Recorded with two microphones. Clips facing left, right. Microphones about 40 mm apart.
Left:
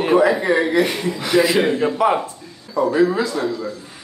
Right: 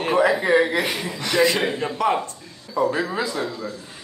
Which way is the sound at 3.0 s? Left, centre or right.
Centre.